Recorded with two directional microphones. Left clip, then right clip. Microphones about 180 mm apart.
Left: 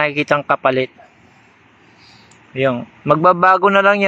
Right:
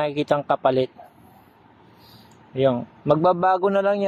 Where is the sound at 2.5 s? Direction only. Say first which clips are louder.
Left 3 dB; centre (ahead or behind).